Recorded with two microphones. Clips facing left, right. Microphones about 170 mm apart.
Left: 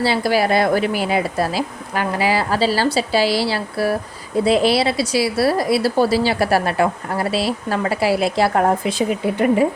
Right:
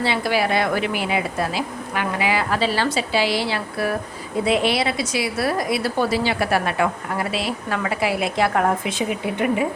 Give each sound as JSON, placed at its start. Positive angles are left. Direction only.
{"t": 0.0, "sound": "a woman's voice", "side_deg": 35}